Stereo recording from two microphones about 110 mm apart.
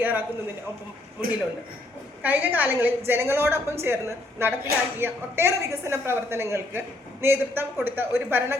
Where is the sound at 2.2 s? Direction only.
15° right (ahead or behind).